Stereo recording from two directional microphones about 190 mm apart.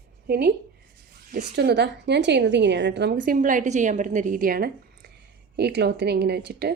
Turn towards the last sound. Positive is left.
turn(degrees=-60)  # may be behind; listen again after turning